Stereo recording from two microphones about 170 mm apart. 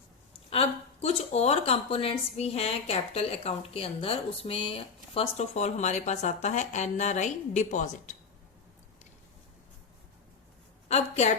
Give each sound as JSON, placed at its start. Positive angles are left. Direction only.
{"t": 1.0, "sound": "a woman's voice", "side_deg": 40}
{"t": 10.8, "sound": "a woman's voice", "side_deg": 40}